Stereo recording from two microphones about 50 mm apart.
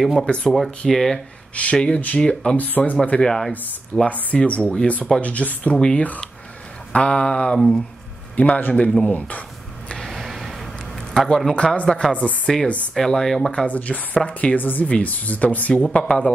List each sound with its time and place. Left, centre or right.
0.0 s speech: centre
0.3 s speech: centre
1.5 s speech: left
2.5 s speech: left
3.2 s speech: centre
4.1 s speech: left
5.2 s speech: left
8.4 s speech: left
10.0 s a sound: centre
11.1 s speech: centre
11.5 s speech: left
13.7 s speech: left
14.6 s speech: left
16.0 s speech: centre